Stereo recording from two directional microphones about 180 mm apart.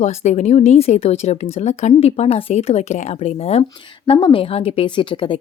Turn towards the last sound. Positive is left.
turn(degrees=25)  # may be behind; listen again after turning